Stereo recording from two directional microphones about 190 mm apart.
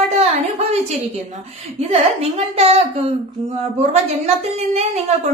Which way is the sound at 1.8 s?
35° right (ahead or behind).